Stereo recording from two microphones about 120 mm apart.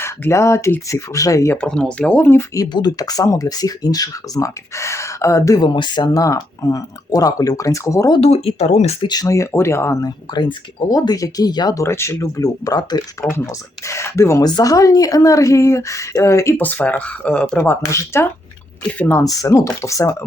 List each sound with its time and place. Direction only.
0.0 s speech: 25° left (ahead or behind)
1.6 s speech: 10° left (ahead or behind)
2.6 s speech: 35° left (ahead or behind)
5.6 s speech: 40° left (ahead or behind)
8.4 s speech: 60° left (ahead or behind)
9.0 s speech: 35° left (ahead or behind)
10.3 s speech: 35° left (ahead or behind); by 17.6 s 10° left (ahead or behind)
17.6 s speech: 20° left (ahead or behind)
19.2 s speech: 30° left (ahead or behind)